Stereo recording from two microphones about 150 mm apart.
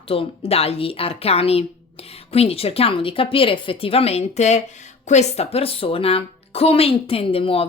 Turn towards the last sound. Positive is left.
turn(degrees=40)  # may be behind; listen again after turning